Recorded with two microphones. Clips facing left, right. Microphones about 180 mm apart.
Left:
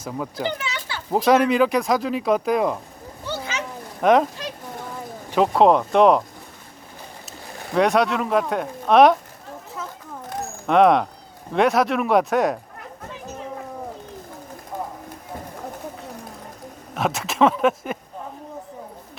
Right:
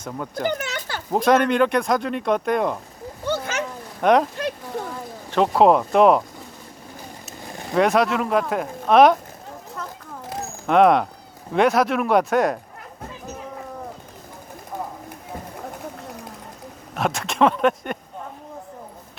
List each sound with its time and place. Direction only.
0.0 s speech: 5° left (ahead or behind)
0.4 s a sound: 45° right (ahead or behind)
1.1 s speech: centre (ahead or behind)
3.2 s a sound: 50° right (ahead or behind)
4.0 s speech: centre (ahead or behind)
5.3 s speech: centre (ahead or behind)
7.7 s speech: centre (ahead or behind)
10.2 s a sound: centre (ahead or behind)
11.5 s speech: centre (ahead or behind)
16.9 s speech: centre (ahead or behind)